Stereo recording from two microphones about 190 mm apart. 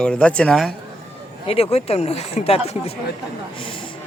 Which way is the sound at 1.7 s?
35° left (ahead or behind).